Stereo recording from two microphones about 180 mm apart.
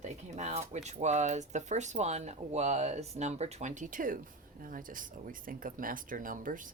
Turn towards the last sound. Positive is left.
turn(degrees=-45)  # may be behind; listen again after turning